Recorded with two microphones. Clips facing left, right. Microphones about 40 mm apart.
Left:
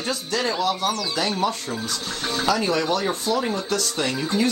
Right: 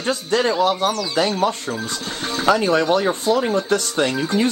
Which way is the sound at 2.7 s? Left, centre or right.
Right.